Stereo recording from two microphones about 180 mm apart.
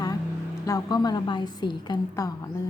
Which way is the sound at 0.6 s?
20° left (ahead or behind).